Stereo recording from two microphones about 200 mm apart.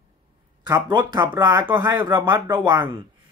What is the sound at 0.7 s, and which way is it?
Speech, 20° right (ahead or behind).